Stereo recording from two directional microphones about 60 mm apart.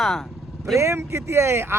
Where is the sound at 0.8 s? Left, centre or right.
Right.